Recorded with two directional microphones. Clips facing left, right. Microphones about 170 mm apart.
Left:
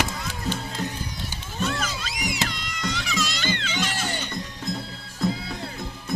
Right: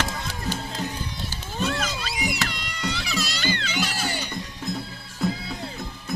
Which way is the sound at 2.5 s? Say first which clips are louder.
Even; 30° right (ahead or behind).